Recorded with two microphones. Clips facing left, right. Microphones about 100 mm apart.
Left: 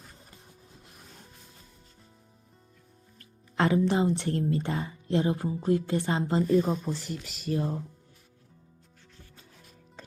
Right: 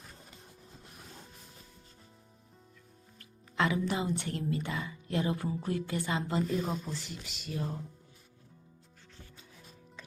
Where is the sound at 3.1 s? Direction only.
35° left (ahead or behind).